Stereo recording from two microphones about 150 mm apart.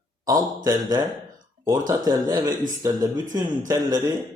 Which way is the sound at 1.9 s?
25° right (ahead or behind).